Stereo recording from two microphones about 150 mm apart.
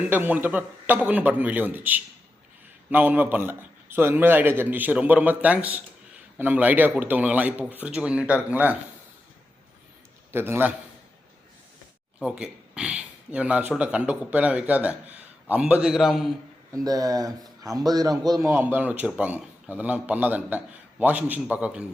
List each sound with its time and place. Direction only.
0.1 s speech: 10° right (ahead or behind)
10.3 s speech: 15° right (ahead or behind)
12.2 s speech: 5° right (ahead or behind)
16.7 s speech: 25° right (ahead or behind); by 21.8 s 10° right (ahead or behind)